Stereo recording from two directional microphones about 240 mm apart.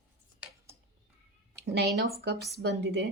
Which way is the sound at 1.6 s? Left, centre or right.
Right.